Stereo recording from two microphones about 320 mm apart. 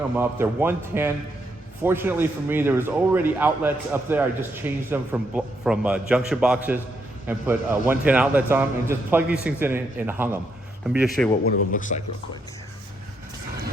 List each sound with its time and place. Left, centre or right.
0.2 s a man's voice: centre
11.4 s a man's voice: left